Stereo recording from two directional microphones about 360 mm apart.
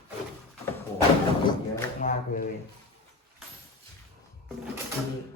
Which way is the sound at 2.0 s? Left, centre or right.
Left.